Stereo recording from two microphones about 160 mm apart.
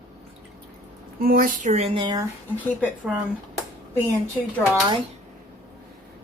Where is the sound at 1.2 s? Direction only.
65° right (ahead or behind).